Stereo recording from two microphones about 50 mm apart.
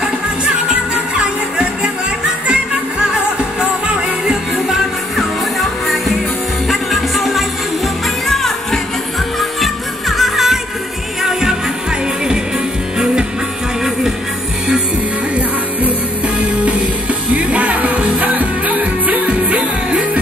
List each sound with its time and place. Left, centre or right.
4.3 s music: centre
17.3 s music: right